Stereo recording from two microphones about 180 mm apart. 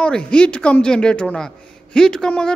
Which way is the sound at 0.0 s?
5° left (ahead or behind).